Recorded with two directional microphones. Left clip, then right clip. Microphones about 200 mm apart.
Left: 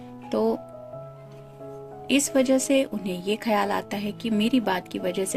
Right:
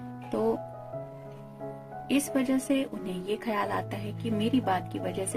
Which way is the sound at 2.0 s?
40° left (ahead or behind).